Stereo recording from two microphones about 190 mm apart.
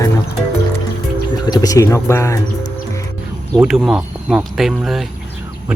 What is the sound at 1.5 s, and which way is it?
Speech, 20° left (ahead or behind).